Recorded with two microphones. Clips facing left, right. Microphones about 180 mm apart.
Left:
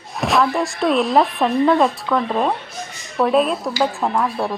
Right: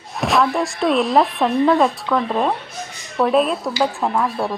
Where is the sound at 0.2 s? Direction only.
Centre (ahead or behind).